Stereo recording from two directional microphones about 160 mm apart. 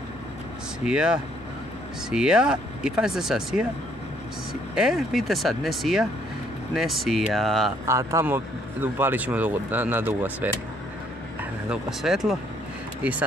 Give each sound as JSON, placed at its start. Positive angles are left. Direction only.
{"t": 0.8, "sound": "speech", "side_deg": -5}
{"t": 4.7, "sound": "speech", "side_deg": 0}
{"t": 7.8, "sound": "speech", "side_deg": -20}
{"t": 11.7, "sound": "speech", "side_deg": -5}